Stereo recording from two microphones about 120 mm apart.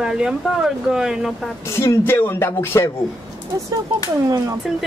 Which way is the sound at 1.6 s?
20° left (ahead or behind).